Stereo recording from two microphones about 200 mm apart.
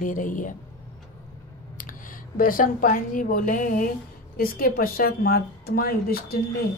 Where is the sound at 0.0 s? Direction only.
40° left (ahead or behind).